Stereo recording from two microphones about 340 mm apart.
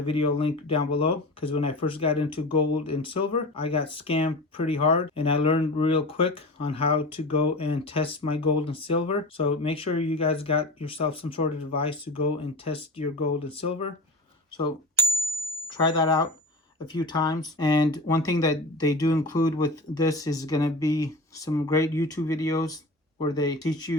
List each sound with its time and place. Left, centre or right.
0.0 s speech: centre